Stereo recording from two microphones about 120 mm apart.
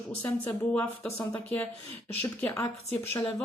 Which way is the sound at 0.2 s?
15° left (ahead or behind).